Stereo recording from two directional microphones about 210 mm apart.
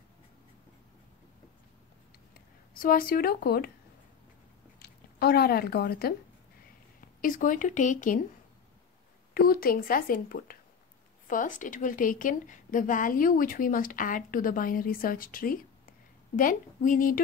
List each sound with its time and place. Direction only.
2.7 s speech: 45° left (ahead or behind)
4.7 s speech: 50° left (ahead or behind)
9.3 s a woman's voice: 45° left (ahead or behind)